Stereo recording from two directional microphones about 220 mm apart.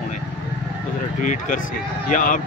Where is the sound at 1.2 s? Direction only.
35° left (ahead or behind).